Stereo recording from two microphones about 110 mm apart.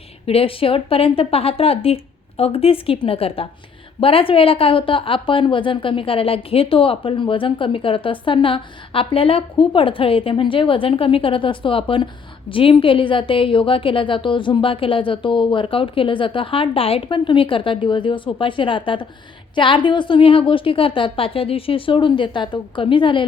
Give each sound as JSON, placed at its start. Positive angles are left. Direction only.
{"t": 0.3, "sound": "a woman's voice", "side_deg": 60}